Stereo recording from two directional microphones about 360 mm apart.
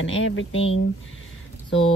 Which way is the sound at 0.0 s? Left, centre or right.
Left.